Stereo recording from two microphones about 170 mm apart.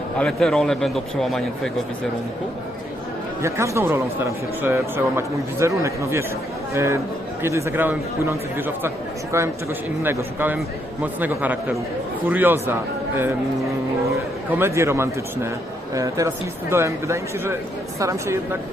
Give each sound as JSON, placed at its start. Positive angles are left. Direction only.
{"t": 0.2, "sound": "a man's voice", "side_deg": 5}
{"t": 3.4, "sound": "a man's voice", "side_deg": -15}
{"t": 10.0, "sound": "a man's voice", "side_deg": -15}
{"t": 14.5, "sound": "a man's voice", "side_deg": -15}